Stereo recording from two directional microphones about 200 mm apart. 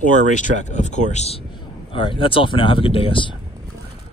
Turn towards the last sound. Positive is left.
turn(degrees=25)  # may be behind; listen again after turning